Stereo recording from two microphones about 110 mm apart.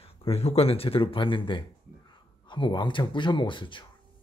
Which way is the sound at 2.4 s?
45° left (ahead or behind).